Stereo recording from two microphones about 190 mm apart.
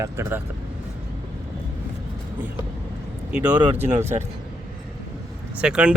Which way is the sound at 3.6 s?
35° right (ahead or behind).